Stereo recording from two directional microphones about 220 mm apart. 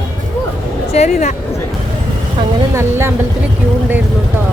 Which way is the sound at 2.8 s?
10° right (ahead or behind).